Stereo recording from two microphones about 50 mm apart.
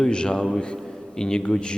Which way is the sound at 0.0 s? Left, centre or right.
Centre.